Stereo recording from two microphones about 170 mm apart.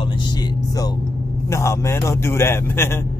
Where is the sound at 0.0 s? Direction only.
25° left (ahead or behind).